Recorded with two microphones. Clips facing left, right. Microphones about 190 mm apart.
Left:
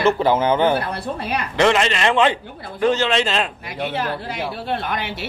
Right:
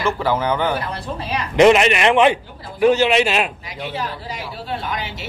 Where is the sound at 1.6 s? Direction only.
15° right (ahead or behind).